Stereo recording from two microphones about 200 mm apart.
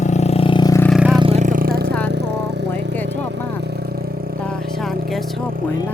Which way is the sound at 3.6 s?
55° right (ahead or behind).